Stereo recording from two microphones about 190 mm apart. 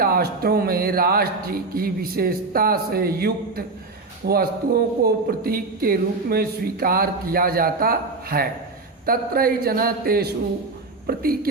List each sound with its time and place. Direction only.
0.0 s speech: 55° right (ahead or behind)